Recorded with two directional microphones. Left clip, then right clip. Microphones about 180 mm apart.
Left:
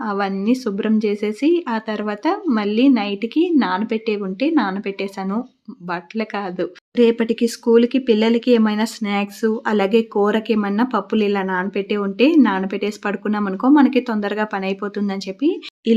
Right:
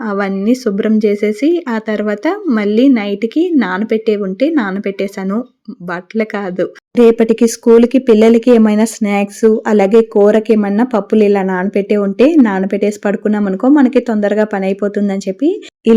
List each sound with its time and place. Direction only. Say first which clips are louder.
0.0 s speech: right 5 dB; 20° right (ahead or behind)